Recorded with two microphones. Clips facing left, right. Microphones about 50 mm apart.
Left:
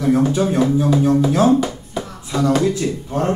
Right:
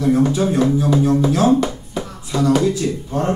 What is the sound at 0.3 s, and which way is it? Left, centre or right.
Speech, left.